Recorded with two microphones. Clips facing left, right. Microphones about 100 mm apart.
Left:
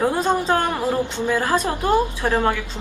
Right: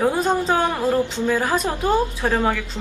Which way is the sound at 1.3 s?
10° right (ahead or behind).